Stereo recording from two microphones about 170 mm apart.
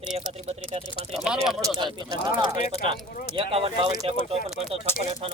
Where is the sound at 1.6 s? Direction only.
25° right (ahead or behind).